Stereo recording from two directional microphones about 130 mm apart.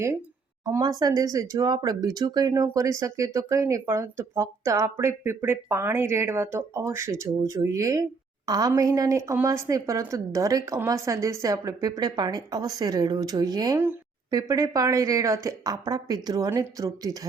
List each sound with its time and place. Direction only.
0.8 s a woman's voice: 30° right (ahead or behind)